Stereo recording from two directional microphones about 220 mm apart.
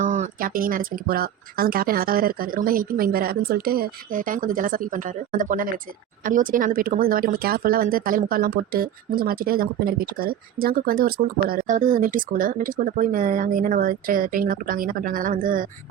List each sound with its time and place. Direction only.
0.0 s speech: 35° right (ahead or behind)